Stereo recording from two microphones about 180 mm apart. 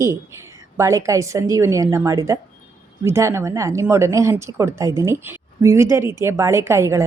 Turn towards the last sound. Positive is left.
turn(degrees=-15)  # may be behind; listen again after turning